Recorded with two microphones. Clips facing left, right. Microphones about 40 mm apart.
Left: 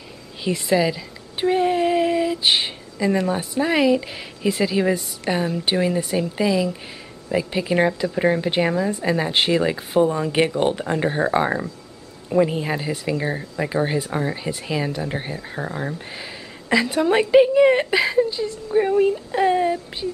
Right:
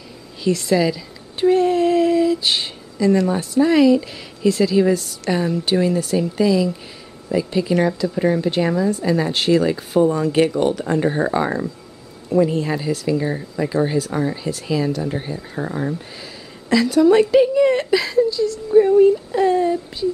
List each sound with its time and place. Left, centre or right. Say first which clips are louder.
0.4 s a woman's voice: right 2 dB; left
15.6 s speech: right 4 dB; centre
16.2 s a woman's voice: left 1 dB; left